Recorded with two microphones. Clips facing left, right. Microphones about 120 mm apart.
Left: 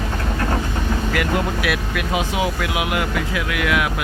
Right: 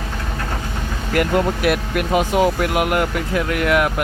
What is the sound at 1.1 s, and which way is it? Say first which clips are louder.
Speech: right 7 dB; 45° right (ahead or behind).